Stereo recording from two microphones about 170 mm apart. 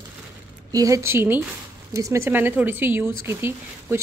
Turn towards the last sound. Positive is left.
turn(degrees=-15)  # may be behind; listen again after turning